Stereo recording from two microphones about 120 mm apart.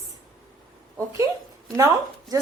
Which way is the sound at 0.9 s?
25° right (ahead or behind).